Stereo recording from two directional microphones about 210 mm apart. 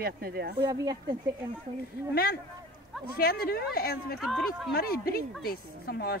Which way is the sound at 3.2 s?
45° left (ahead or behind).